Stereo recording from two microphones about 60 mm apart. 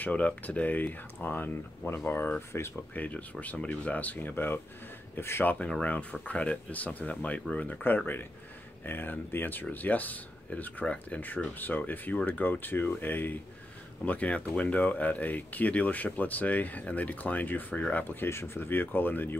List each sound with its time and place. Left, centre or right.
0.0 s speech: left
2.5 s speech: left
2.9 s speech: left
5.1 s speech: left
5.4 s speech: left
7.8 s speech: left
14.0 s speech: left